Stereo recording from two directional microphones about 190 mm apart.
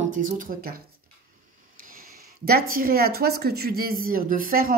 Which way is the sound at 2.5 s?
50° right (ahead or behind).